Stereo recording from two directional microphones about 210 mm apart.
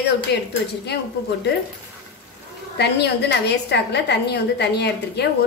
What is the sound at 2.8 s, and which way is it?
A woman's voice, 55° left (ahead or behind).